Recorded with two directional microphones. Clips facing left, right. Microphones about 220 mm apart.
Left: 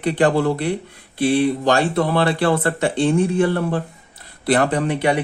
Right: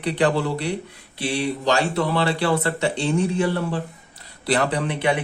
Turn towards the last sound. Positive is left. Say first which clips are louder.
# left 4 dB
turn(degrees=45)  # may be behind; listen again after turning